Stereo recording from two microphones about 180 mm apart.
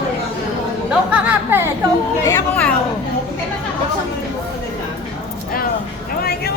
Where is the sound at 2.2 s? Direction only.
20° left (ahead or behind).